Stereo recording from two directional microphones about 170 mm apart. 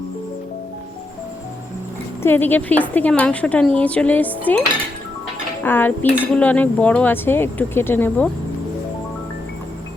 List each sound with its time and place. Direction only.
2.2 s speech: 10° left (ahead or behind)
5.6 s speech: 10° left (ahead or behind)